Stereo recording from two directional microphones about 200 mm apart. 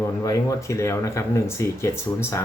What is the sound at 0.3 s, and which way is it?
Speech, 15° left (ahead or behind).